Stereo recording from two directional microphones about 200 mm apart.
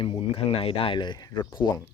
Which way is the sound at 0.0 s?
30° left (ahead or behind).